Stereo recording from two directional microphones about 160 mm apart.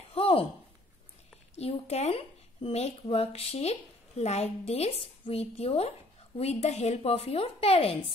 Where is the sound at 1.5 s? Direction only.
40° left (ahead or behind).